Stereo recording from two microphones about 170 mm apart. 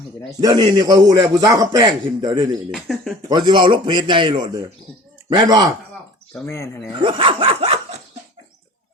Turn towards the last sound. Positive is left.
turn(degrees=-35)  # may be behind; listen again after turning